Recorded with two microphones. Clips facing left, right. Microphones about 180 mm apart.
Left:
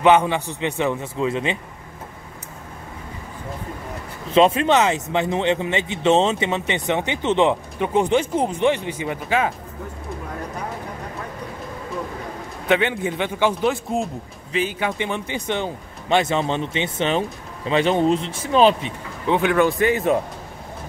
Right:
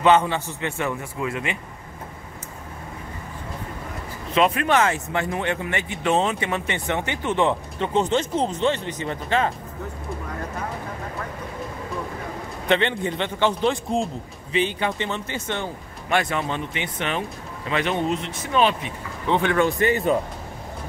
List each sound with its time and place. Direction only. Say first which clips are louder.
0.0 s speech: left 2 dB; 15° left (ahead or behind)
4.3 s speech: left 4 dB; 25° left (ahead or behind); by 9.5 s 10° left (ahead or behind)
12.6 s speech: left 2 dB; 5° left (ahead or behind); by 18.9 s 30° left (ahead or behind)
19.2 s a man's voice: left 2 dB; 10° left (ahead or behind)